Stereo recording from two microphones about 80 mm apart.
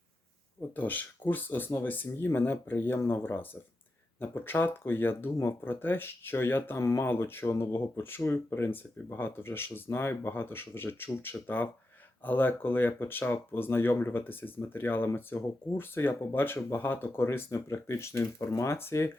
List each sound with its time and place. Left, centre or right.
0.8 s speech: left
6.7 s speech: left